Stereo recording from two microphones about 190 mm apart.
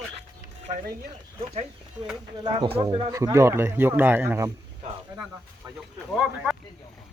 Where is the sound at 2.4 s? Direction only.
25° right (ahead or behind).